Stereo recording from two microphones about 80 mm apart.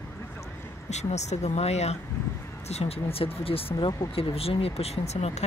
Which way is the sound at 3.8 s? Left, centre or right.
Left.